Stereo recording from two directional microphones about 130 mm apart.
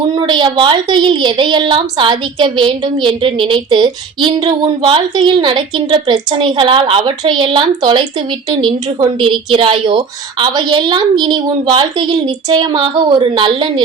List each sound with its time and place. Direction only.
0.1 s a woman's voice: 35° right (ahead or behind)